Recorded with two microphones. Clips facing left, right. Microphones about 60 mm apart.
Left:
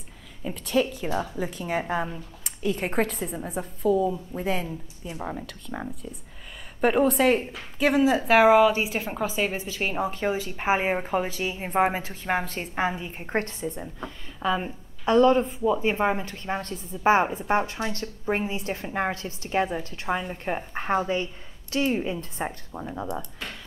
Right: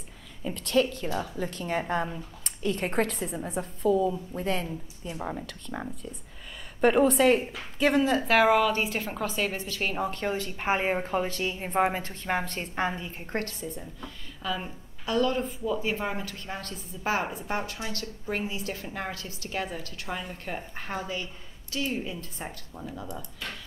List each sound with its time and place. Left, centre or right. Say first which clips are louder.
0.4 s a woman's voice: even; centre
13.0 s a woman's voice: left 4 dB; left